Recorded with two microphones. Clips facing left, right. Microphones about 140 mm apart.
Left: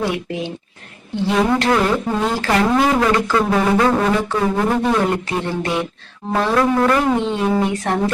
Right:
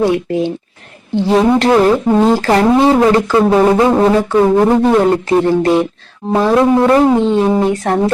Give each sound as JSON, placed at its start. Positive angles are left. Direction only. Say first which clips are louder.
{"t": 0.0, "sound": "speech", "louder": "right 9 dB", "side_deg": -35}
{"t": 6.3, "sound": "speech", "louder": "right 6 dB", "side_deg": -25}